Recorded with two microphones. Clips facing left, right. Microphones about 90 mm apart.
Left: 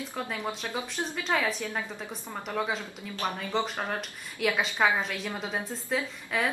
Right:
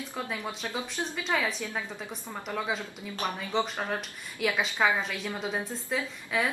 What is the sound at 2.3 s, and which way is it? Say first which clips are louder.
A woman's voice: left 1 dB; 5° left (ahead or behind).